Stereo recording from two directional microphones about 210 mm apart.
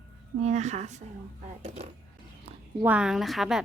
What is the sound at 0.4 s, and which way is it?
A woman's voice, 35° right (ahead or behind).